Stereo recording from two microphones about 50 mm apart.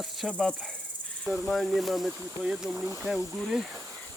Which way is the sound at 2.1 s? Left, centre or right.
Centre.